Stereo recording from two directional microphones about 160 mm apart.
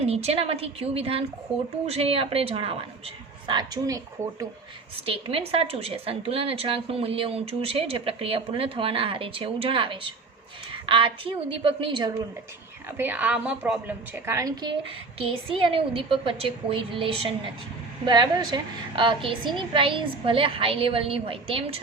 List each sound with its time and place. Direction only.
0.0 s a woman's voice: 40° right (ahead or behind); by 4.4 s 20° right (ahead or behind)
5.0 s a woman's voice: 35° right (ahead or behind)
13.0 s a woman's voice: 10° right (ahead or behind)
15.2 s a woman's voice: 35° right (ahead or behind)